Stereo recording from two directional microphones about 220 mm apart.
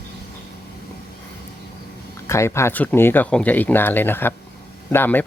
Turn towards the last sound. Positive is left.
turn(degrees=10)  # may be behind; listen again after turning